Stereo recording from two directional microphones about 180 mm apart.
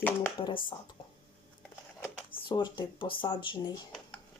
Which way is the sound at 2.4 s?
25° left (ahead or behind).